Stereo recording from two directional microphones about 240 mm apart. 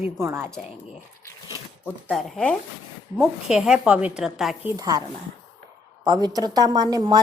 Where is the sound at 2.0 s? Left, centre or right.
Centre.